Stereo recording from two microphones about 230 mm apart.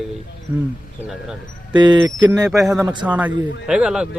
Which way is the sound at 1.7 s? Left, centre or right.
Centre.